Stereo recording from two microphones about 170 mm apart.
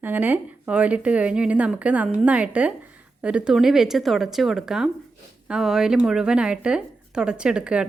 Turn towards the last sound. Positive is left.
turn(degrees=-5)  # may be behind; listen again after turning